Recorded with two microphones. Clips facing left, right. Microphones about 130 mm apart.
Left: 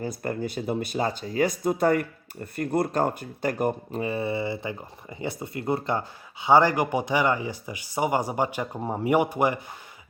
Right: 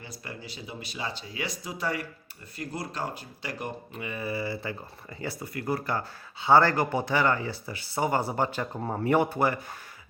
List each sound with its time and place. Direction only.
0.0 s speech: 50° left (ahead or behind); by 9.6 s 15° left (ahead or behind)